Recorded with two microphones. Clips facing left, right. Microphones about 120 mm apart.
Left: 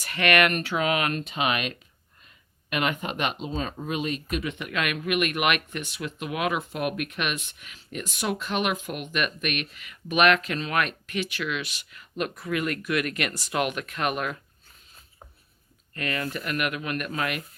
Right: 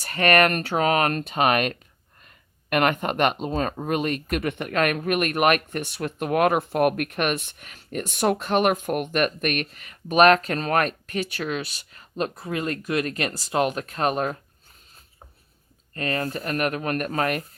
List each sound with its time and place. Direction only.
0.0 s speech: 40° right (ahead or behind)
16.0 s speech: 35° right (ahead or behind)